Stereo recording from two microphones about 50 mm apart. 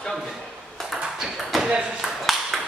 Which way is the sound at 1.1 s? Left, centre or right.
Centre.